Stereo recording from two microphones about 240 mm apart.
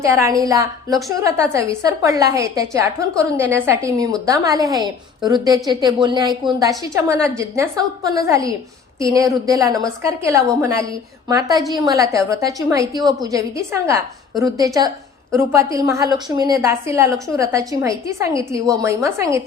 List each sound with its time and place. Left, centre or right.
0.0 s a woman's voice: centre